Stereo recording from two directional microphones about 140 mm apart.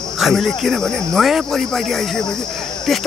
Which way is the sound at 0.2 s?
Centre (ahead or behind).